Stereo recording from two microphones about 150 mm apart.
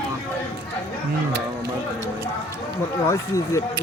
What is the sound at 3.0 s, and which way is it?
Speech, 20° left (ahead or behind).